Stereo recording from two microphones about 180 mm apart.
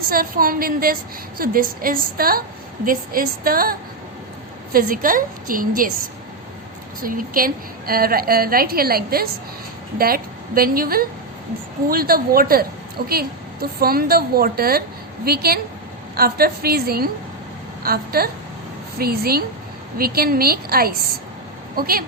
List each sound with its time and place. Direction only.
0.1 s a woman's voice: 50° right (ahead or behind)
7.0 s a woman's voice: 50° right (ahead or behind)